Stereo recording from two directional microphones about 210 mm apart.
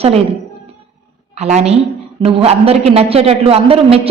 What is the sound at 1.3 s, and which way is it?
A woman's voice, 30° right (ahead or behind).